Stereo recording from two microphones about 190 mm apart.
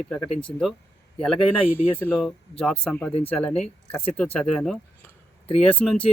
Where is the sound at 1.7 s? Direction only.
10° left (ahead or behind).